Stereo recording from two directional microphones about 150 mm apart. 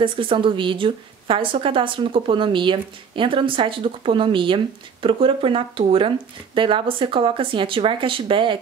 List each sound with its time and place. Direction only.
0.0 s a woman's voice: 35° right (ahead or behind)